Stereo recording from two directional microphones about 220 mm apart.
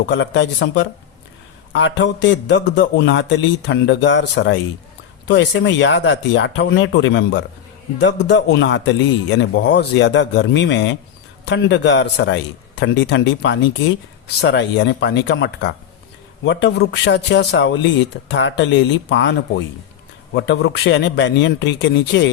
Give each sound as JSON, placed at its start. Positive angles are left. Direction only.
{"t": 0.1, "sound": "a man's voice", "side_deg": 55}